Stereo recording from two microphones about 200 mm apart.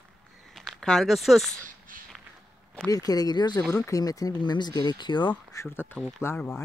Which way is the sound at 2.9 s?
20° left (ahead or behind).